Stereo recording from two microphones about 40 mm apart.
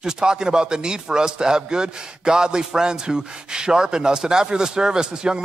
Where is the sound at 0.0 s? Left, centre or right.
Centre.